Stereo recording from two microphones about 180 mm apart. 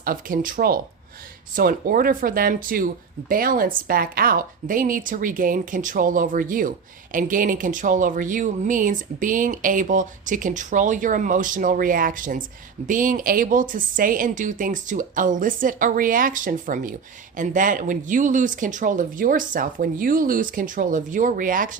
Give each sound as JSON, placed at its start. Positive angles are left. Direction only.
{"t": 0.0, "sound": "speech", "side_deg": -50}